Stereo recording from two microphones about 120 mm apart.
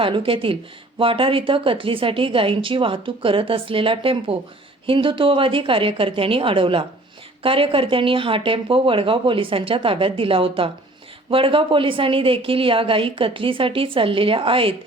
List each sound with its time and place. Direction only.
0.0 s a woman's voice: 50° right (ahead or behind)